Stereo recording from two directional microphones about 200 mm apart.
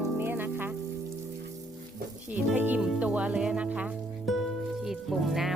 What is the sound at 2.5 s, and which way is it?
Speech, 10° right (ahead or behind).